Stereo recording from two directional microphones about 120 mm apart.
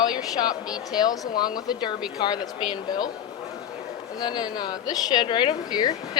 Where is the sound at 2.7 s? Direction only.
35° left (ahead or behind).